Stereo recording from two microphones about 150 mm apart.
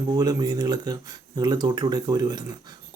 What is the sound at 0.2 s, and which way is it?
Speech, 25° right (ahead or behind).